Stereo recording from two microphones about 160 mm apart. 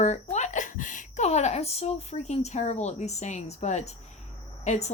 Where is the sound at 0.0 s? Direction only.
45° left (ahead or behind).